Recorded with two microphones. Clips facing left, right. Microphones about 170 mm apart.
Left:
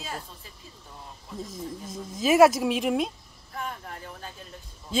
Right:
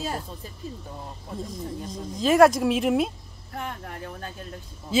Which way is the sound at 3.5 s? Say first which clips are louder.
Right 2 dB; 60° right (ahead or behind).